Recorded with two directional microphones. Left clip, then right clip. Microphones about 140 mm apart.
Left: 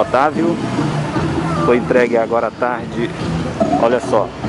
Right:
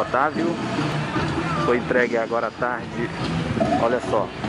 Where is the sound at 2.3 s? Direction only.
5° left (ahead or behind).